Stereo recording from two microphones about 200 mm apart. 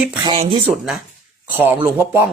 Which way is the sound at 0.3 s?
30° right (ahead or behind).